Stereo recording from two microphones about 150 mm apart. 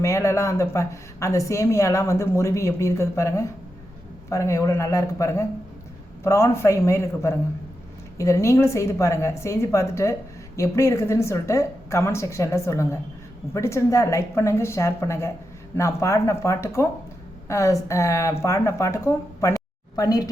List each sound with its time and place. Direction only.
0.0 s a woman's voice: 20° left (ahead or behind)